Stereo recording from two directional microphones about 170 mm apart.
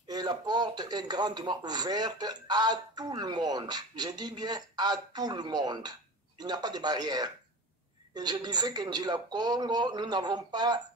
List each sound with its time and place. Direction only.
0.1 s speech: 25° right (ahead or behind)